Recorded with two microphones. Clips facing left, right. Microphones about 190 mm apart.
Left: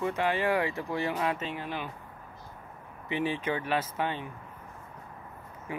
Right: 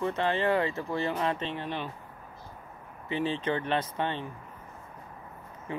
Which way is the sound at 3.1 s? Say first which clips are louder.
Right 1 dB; 15° left (ahead or behind).